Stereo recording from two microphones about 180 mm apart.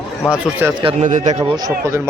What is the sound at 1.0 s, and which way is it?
Speech, 40° right (ahead or behind).